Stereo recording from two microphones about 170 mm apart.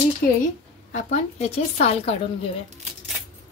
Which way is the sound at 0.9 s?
40° left (ahead or behind).